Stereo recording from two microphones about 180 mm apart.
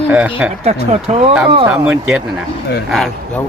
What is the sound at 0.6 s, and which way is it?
Speech, 35° right (ahead or behind).